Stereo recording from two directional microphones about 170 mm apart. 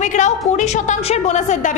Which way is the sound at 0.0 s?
45° left (ahead or behind).